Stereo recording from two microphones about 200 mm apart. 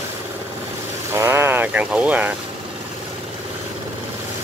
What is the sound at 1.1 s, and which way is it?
Speech, 10° right (ahead or behind).